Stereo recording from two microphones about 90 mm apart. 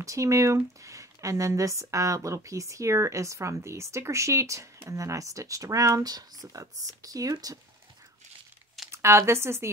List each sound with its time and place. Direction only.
0.0 s speech: 35° right (ahead or behind)
8.9 s speech: 30° right (ahead or behind)